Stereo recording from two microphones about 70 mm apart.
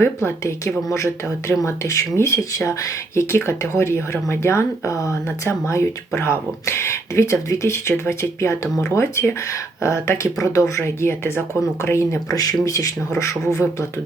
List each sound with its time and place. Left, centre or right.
0.0 s speech: left
3.3 s speech: left
12.3 s speech: left